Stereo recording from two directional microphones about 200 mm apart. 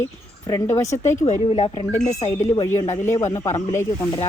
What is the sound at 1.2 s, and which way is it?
Speech, 30° left (ahead or behind).